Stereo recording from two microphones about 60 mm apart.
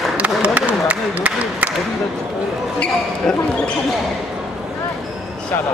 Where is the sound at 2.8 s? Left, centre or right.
Centre.